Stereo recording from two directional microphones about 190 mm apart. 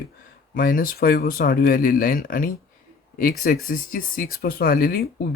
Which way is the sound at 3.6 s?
50° left (ahead or behind).